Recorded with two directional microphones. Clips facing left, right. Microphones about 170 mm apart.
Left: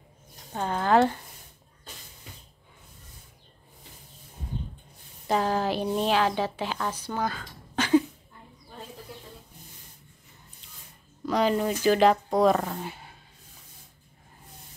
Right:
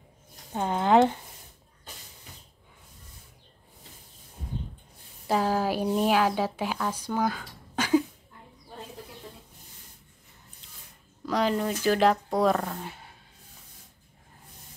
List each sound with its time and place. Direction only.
0.5 s speech: 15° right (ahead or behind)
5.2 s speech: 5° right (ahead or behind)
7.1 s a sound: 10° right (ahead or behind)
11.2 s speech: centre (ahead or behind)